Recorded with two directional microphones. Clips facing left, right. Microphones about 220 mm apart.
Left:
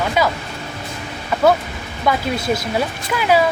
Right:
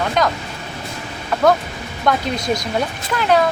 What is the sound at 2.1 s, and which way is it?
Speech, 5° left (ahead or behind).